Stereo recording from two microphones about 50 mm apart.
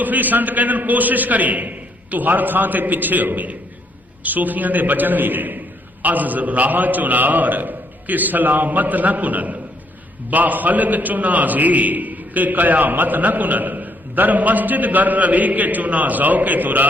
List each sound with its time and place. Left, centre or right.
0.0 s a man's voice: right